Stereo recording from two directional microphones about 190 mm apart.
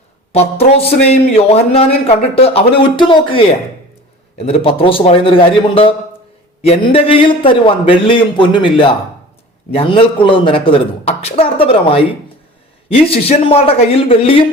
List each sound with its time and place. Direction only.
0.3 s a man's voice: 30° left (ahead or behind)